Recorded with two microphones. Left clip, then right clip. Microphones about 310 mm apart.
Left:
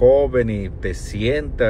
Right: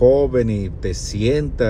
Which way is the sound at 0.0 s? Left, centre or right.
Centre.